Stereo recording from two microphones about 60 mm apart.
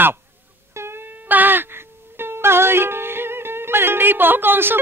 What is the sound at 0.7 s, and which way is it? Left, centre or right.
Music, right.